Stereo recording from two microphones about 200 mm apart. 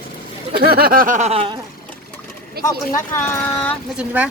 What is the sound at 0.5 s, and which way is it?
Speech, 50° right (ahead or behind).